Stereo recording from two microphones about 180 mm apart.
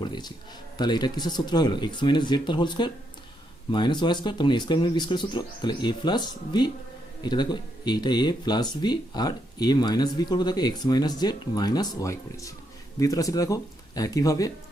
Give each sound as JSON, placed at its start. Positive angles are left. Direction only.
{"t": 0.0, "sound": "a man's voice", "side_deg": 25}